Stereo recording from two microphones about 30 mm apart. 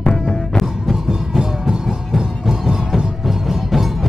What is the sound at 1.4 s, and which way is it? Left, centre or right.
Music, centre.